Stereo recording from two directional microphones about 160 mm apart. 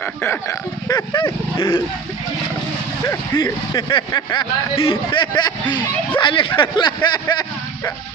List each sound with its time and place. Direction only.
0.0 s speech: 10° left (ahead or behind); by 1.8 s 30° left (ahead or behind)
3.0 s speech: 20° left (ahead or behind)